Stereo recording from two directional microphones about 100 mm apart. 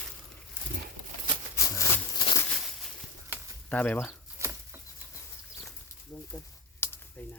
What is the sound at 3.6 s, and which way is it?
Speech, 15° left (ahead or behind).